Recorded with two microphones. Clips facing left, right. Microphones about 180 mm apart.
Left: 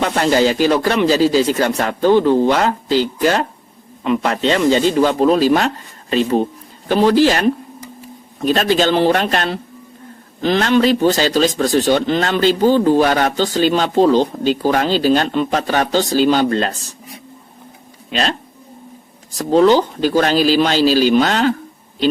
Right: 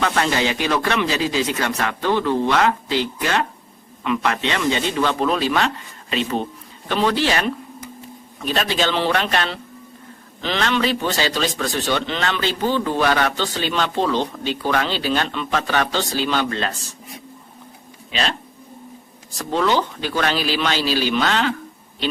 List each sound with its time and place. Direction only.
0.0 s speech: 35° left (ahead or behind)
19.4 s speech: 40° left (ahead or behind)